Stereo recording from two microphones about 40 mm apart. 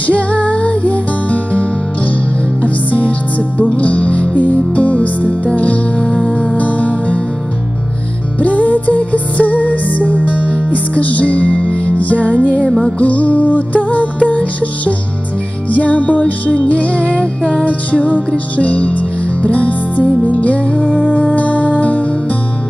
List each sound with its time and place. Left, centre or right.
0.0 s music: left
6.0 s music: centre
6.5 s music: left
8.4 s music: left
12.6 s music: centre
13.0 s music: left